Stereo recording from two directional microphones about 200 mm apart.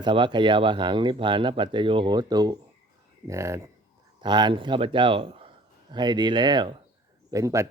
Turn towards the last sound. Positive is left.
turn(degrees=-15)  # may be behind; listen again after turning